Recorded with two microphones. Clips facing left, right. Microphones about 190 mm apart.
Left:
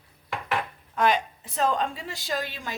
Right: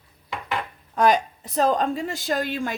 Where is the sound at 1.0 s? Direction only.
40° right (ahead or behind).